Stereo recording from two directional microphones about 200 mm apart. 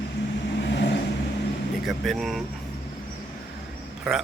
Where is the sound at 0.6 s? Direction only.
60° left (ahead or behind).